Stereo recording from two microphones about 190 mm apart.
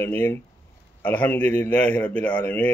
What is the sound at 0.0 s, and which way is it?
Speech, 10° left (ahead or behind).